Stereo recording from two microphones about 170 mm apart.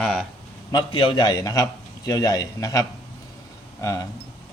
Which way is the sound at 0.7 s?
25° left (ahead or behind).